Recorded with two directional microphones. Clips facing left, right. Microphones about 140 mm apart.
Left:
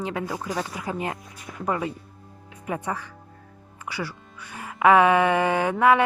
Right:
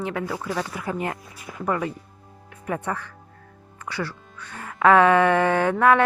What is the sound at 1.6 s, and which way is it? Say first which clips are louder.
Speech: right 1 dB; 20° left (ahead or behind).